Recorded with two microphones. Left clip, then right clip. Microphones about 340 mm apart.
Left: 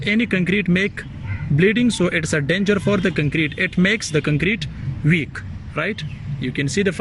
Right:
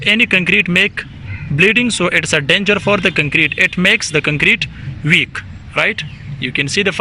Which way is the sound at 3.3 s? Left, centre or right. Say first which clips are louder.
Right 8 dB; right.